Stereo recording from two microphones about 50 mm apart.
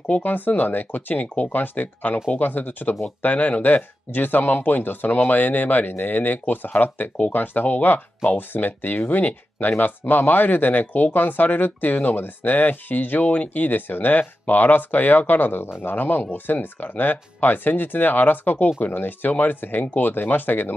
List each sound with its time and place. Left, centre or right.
0.2 s speech: left
1.2 s speech: left